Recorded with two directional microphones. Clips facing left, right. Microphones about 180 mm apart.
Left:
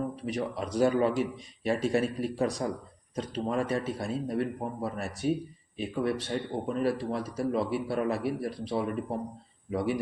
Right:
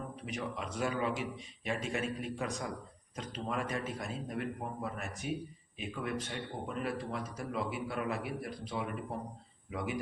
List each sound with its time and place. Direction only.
0.3 s speech: 35° left (ahead or behind)